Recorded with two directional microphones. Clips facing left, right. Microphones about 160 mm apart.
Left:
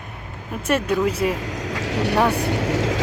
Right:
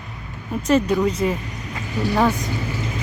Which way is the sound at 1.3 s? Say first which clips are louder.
Left 2 dB; 90° left.